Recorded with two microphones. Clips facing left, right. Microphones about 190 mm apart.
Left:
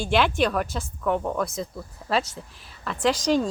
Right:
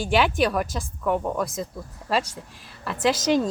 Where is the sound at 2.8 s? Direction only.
5° right (ahead or behind).